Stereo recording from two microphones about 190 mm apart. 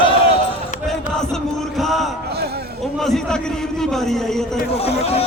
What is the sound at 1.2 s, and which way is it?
Chant, centre (ahead or behind).